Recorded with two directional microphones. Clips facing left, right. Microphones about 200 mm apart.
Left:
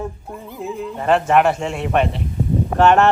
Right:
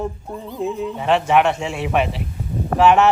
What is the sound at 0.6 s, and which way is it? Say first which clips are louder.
Speech: right 1 dB; centre (ahead or behind).